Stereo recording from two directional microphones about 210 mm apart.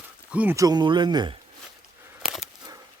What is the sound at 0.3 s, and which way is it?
Speech, 5° right (ahead or behind).